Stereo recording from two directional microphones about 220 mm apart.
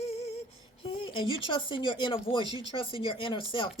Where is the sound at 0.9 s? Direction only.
25° left (ahead or behind).